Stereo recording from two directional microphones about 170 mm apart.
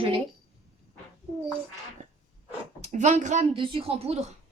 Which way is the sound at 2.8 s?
45° right (ahead or behind).